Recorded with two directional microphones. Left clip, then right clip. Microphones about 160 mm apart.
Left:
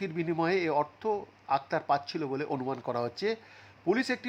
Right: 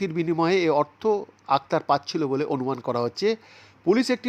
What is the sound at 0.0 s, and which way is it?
Speech, 25° right (ahead or behind).